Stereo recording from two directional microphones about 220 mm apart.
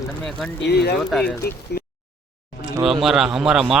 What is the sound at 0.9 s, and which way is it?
Speech, centre (ahead or behind).